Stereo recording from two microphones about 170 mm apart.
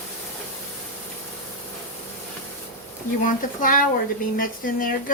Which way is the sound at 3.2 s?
55° left (ahead or behind).